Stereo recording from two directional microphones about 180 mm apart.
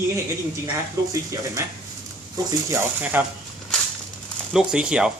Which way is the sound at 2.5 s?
15° right (ahead or behind).